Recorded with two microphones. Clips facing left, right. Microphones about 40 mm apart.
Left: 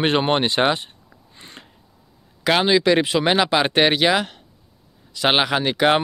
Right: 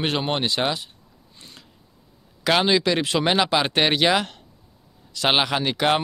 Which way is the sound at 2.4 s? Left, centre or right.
Centre.